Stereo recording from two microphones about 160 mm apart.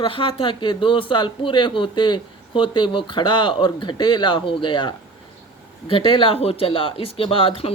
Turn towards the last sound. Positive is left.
turn(degrees=35)  # may be behind; listen again after turning